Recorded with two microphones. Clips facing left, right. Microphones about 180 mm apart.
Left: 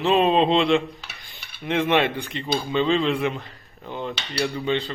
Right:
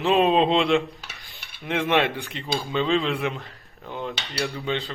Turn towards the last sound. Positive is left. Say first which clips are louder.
# left 3 dB
turn(degrees=0)  # may be behind; listen again after turning